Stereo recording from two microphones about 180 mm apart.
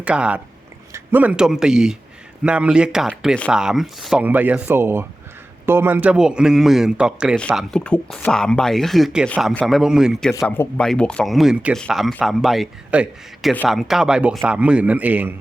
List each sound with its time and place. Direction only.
0.0 s a man's voice: 5° right (ahead or behind)